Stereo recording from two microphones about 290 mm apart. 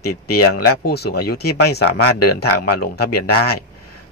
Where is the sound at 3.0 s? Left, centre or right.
Left.